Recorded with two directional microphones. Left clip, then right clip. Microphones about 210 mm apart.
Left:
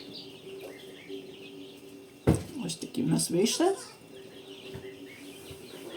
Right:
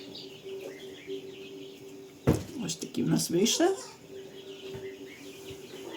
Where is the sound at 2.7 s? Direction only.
20° right (ahead or behind).